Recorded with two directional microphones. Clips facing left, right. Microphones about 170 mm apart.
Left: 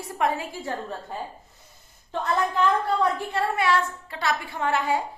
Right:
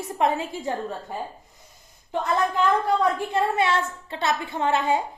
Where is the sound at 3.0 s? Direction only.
20° right (ahead or behind).